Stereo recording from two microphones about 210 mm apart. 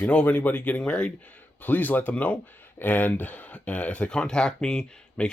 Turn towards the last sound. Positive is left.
turn(degrees=5)  # may be behind; listen again after turning